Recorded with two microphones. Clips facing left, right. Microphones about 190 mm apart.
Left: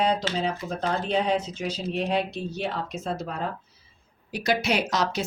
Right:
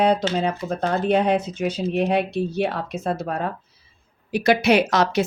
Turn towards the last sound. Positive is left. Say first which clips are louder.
# right 7 dB
turn(degrees=-65)  # may be behind; listen again after turning